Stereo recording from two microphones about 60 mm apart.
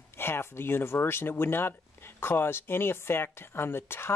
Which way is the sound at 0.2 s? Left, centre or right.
Left.